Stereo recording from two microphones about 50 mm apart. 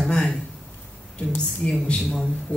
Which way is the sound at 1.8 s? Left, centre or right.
Centre.